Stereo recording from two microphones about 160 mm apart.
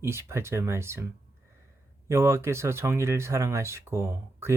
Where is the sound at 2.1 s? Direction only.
15° right (ahead or behind).